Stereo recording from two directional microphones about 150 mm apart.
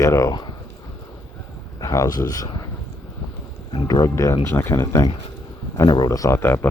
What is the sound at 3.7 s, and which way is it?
Speech, 25° left (ahead or behind).